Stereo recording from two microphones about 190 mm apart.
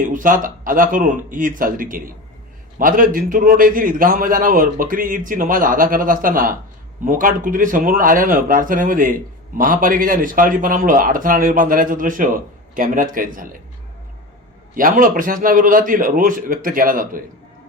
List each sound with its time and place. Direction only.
0.0 s speech: 45° right (ahead or behind)
14.8 s speech: 45° right (ahead or behind)